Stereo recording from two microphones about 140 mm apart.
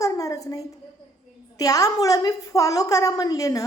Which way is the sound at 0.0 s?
25° left (ahead or behind).